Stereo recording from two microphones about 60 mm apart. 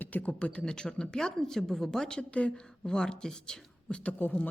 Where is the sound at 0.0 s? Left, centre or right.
Left.